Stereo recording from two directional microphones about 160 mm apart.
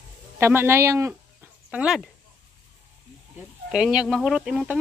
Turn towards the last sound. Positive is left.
turn(degrees=-5)  # may be behind; listen again after turning